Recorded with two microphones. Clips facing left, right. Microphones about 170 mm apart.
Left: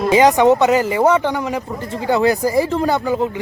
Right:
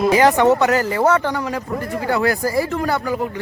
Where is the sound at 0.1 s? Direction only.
20° left (ahead or behind).